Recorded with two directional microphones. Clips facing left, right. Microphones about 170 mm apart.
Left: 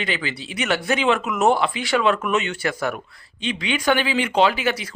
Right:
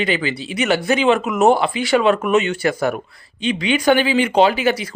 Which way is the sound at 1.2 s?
40° right (ahead or behind).